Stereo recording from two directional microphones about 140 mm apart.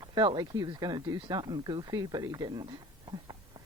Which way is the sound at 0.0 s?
30° right (ahead or behind).